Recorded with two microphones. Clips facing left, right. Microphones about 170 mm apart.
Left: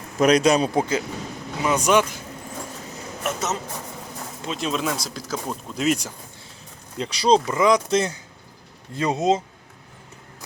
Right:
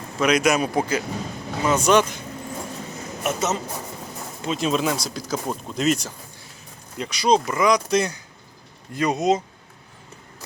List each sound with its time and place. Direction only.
0.2 s speech: 35° left (ahead or behind)
1.6 s speech: 10° left (ahead or behind)
3.2 s speech: centre (ahead or behind)
6.9 s speech: 30° left (ahead or behind)